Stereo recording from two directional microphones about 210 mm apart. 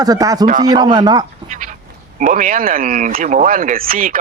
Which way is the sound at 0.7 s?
20° right (ahead or behind).